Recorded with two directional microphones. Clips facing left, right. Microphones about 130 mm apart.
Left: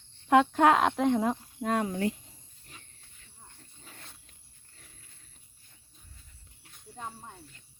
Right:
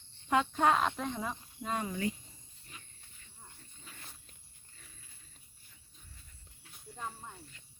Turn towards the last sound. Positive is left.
turn(degrees=20)  # may be behind; listen again after turning